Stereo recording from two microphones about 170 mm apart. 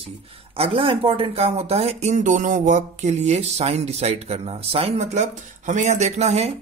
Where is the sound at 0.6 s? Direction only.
35° right (ahead or behind).